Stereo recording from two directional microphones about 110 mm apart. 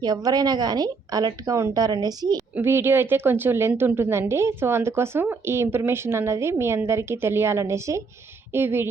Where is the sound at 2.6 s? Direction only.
20° right (ahead or behind).